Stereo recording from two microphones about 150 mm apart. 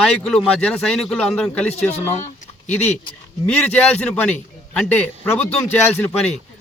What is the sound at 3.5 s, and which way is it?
A man's voice, 10° left (ahead or behind).